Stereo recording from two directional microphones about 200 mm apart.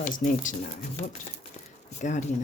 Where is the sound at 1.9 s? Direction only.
35° left (ahead or behind).